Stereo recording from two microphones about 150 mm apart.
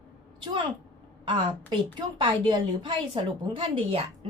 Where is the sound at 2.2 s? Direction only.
35° right (ahead or behind).